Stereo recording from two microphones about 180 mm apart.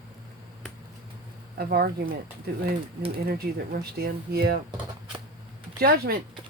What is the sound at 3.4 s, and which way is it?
Speech, 60° right (ahead or behind).